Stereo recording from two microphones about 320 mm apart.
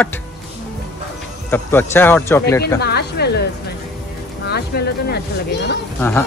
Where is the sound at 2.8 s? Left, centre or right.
Left.